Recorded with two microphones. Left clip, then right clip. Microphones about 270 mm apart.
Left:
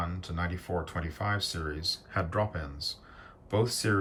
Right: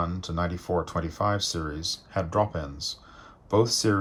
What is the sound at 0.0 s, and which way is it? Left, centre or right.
Speech, centre.